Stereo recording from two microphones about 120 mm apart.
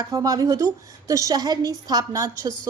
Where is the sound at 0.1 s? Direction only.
30° right (ahead or behind).